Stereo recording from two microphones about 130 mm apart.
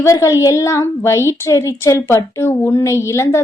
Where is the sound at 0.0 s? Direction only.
25° left (ahead or behind).